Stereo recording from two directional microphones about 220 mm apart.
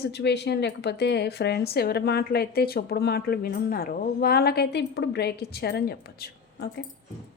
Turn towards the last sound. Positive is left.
turn(degrees=45)  # may be behind; listen again after turning